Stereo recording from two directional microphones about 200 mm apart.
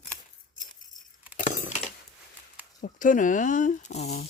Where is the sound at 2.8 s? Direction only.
40° left (ahead or behind).